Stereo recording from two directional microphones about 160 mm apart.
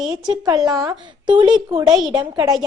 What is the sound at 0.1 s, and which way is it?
A woman's voice, 25° right (ahead or behind).